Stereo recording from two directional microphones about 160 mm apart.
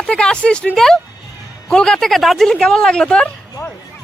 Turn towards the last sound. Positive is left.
turn(degrees=5)  # may be behind; listen again after turning